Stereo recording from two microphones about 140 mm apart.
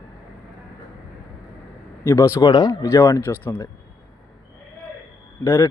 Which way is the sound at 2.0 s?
20° left (ahead or behind).